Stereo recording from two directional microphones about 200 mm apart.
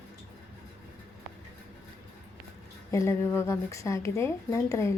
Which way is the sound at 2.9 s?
15° left (ahead or behind).